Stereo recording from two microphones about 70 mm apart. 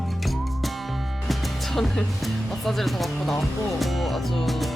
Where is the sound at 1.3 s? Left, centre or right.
Centre.